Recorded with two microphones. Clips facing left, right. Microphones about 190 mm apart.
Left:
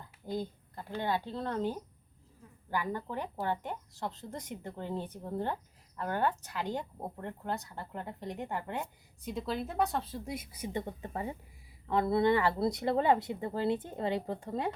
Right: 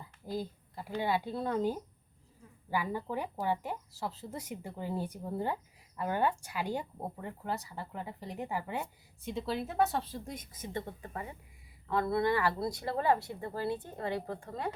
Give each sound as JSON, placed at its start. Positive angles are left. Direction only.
{"t": 0.0, "sound": "speech", "side_deg": -5}